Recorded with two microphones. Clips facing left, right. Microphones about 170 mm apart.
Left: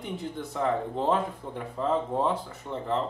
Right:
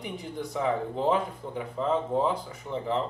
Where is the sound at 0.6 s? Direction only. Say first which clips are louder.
Even; 5° right (ahead or behind).